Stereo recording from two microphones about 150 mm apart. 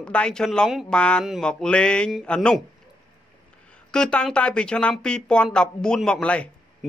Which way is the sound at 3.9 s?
5° left (ahead or behind).